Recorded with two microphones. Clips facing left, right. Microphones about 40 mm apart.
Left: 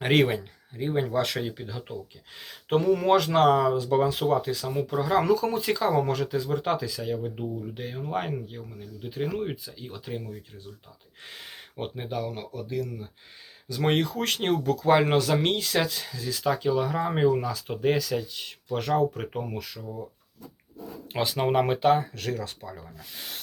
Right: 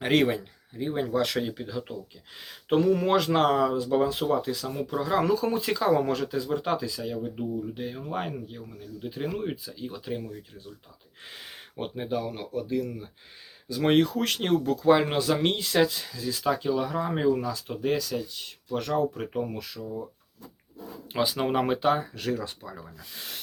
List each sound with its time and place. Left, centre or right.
0.0 s speech: centre
15.6 s speech: centre
18.7 s speech: left
19.2 s speech: centre
21.1 s speech: centre
22.1 s speech: centre
23.1 s speech: centre